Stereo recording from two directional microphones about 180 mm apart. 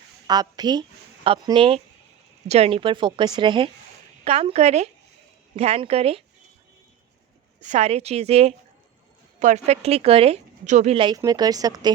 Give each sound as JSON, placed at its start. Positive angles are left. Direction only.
{"t": 0.3, "sound": "speech", "side_deg": -20}
{"t": 7.6, "sound": "speech", "side_deg": -40}
{"t": 10.9, "sound": "speech", "side_deg": -25}